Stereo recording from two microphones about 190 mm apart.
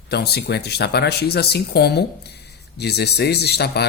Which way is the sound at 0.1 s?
60° left (ahead or behind).